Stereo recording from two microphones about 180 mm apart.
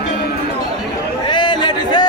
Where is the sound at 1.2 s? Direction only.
25° left (ahead or behind).